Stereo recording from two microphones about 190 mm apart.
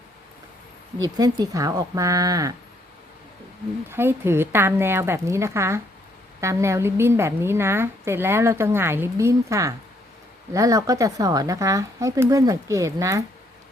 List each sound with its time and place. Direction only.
0.9 s speech: 20° right (ahead or behind)
3.8 s a woman's voice: 10° right (ahead or behind)